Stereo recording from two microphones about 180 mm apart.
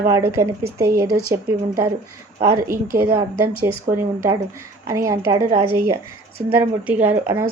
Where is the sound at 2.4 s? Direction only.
15° right (ahead or behind).